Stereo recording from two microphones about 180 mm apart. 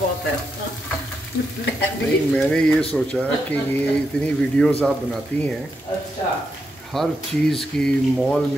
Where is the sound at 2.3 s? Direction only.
5° left (ahead or behind).